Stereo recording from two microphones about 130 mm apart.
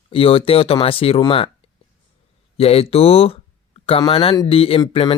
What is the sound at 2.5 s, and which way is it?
Speech, 50° left (ahead or behind).